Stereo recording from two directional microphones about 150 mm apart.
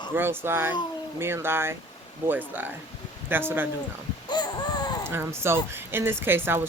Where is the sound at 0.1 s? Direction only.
15° right (ahead or behind).